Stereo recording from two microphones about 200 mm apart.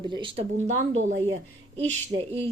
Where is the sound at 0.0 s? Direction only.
25° right (ahead or behind).